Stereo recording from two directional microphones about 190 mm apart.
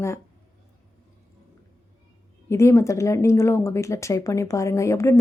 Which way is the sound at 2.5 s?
15° left (ahead or behind).